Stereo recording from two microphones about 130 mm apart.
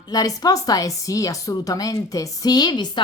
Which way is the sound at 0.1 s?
30° left (ahead or behind).